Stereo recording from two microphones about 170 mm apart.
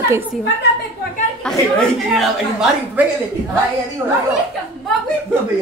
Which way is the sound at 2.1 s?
Centre (ahead or behind).